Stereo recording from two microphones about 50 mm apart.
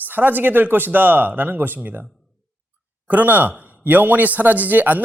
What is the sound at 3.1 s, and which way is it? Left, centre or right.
Speech, right.